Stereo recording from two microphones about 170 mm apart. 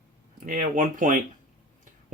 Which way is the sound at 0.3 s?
55° right (ahead or behind).